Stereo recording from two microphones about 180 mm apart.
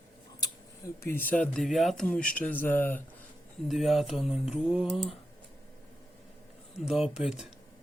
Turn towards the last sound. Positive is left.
turn(degrees=-5)  # may be behind; listen again after turning